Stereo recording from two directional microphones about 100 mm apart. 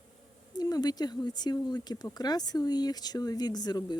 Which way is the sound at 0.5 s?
45° left (ahead or behind).